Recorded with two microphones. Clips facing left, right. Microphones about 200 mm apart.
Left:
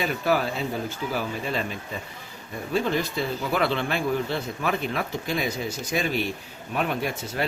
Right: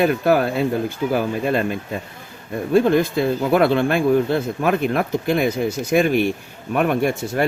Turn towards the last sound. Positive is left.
turn(degrees=-50)  # may be behind; listen again after turning